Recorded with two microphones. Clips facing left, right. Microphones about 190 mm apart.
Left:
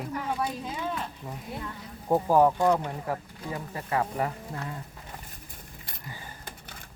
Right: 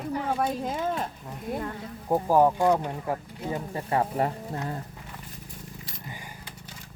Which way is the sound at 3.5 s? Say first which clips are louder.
Right 3 dB; 30° right (ahead or behind).